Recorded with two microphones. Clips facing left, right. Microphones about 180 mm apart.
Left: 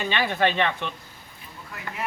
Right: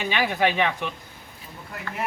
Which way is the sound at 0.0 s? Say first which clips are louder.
Even; 10° right (ahead or behind).